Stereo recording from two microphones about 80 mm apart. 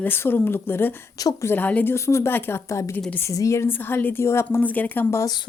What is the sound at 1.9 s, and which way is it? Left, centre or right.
Speech, left.